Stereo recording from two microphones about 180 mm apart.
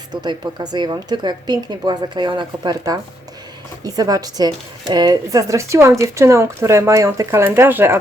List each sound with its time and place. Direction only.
0.1 s speech: 20° right (ahead or behind)